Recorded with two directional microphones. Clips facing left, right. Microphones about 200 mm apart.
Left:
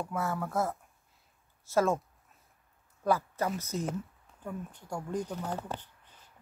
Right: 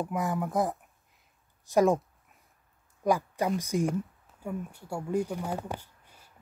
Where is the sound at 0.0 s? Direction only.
15° right (ahead or behind).